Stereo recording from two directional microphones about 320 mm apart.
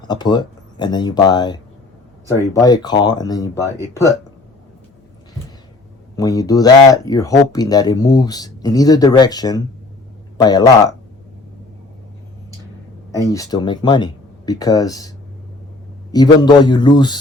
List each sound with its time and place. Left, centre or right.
0.1 s speech: centre
6.1 s speech: centre
13.3 s speech: centre
16.1 s speech: centre